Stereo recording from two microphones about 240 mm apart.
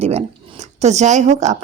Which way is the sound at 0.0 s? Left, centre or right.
Right.